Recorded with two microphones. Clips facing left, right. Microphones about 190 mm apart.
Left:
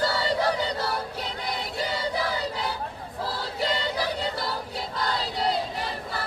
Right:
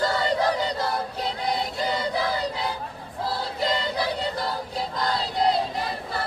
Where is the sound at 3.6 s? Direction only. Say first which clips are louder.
Right 1 dB; 35° right (ahead or behind).